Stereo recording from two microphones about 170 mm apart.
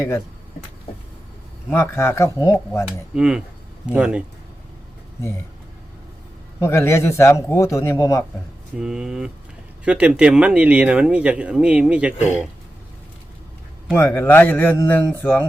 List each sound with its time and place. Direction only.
1.7 s a man's voice: 15° left (ahead or behind)
2.8 s speech: 5° right (ahead or behind)
6.6 s a man's voice: 15° left (ahead or behind)
8.8 s speech: 5° right (ahead or behind)
13.9 s a man's voice: 10° left (ahead or behind)